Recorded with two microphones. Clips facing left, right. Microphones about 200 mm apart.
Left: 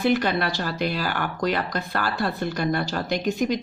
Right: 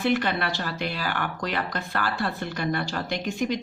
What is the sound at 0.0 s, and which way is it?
Speech, 40° left (ahead or behind).